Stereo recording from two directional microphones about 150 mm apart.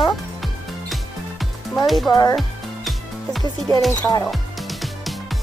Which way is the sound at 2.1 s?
25° left (ahead or behind).